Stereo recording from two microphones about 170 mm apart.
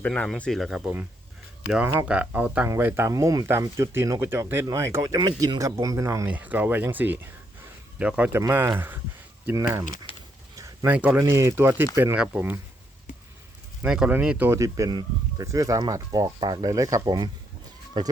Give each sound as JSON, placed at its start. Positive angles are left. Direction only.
{"t": 0.0, "sound": "speech", "side_deg": 5}
{"t": 10.1, "sound": "a sound", "side_deg": 30}
{"t": 10.8, "sound": "speech", "side_deg": -10}
{"t": 13.8, "sound": "speech", "side_deg": -5}